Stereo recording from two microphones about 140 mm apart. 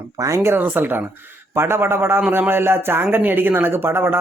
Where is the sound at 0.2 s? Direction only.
20° right (ahead or behind).